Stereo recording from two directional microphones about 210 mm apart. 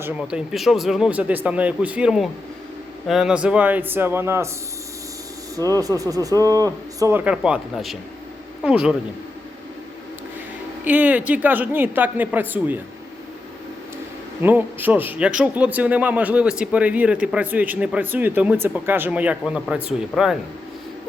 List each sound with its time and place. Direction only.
0.0 s a man's voice: 5° right (ahead or behind)
5.5 s a man's voice: 15° right (ahead or behind)
10.8 s a man's voice: 10° right (ahead or behind)
14.4 s a man's voice: 10° right (ahead or behind)